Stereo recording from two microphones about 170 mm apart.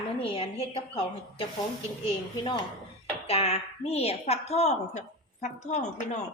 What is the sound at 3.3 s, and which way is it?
A woman's voice, 35° left (ahead or behind).